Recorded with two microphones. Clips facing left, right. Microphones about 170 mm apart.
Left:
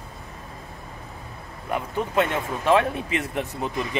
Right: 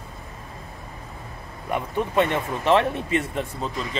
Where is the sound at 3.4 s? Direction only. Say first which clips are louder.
Left 1 dB; 15° left (ahead or behind).